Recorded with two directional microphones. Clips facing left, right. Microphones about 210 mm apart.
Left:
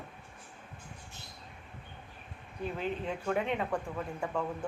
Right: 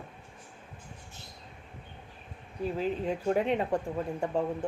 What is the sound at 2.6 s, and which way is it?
Speech, 35° right (ahead or behind).